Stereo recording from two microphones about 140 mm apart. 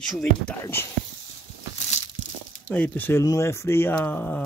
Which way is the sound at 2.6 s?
10° left (ahead or behind).